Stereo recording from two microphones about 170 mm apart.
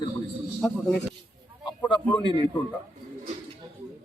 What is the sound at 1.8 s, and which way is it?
Speech, 30° left (ahead or behind).